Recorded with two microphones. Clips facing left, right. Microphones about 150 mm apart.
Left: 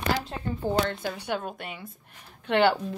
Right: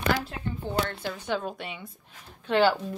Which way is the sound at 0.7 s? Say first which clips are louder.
Left 4 dB; 40° left (ahead or behind).